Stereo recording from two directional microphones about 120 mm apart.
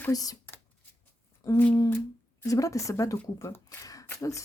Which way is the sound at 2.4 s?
25° left (ahead or behind).